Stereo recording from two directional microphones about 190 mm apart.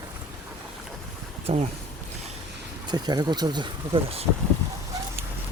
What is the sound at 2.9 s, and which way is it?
Speech, 20° right (ahead or behind).